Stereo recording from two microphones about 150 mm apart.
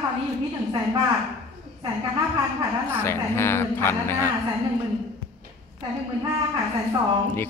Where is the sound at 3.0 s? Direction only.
15° left (ahead or behind).